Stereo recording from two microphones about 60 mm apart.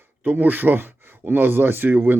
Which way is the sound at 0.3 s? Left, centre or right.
Right.